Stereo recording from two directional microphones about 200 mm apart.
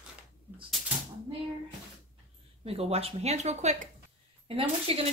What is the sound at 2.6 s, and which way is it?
Speech, 30° right (ahead or behind).